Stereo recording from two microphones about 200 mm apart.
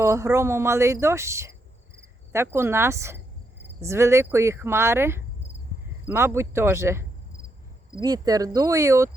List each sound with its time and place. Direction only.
0.0 s speech: 15° right (ahead or behind)
2.0 s cricket: 15° right (ahead or behind)
3.8 s speech: 15° right (ahead or behind)
8.0 s speech: 20° right (ahead or behind)